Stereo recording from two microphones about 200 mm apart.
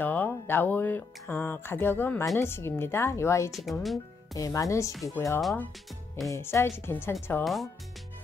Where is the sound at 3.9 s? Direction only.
15° left (ahead or behind).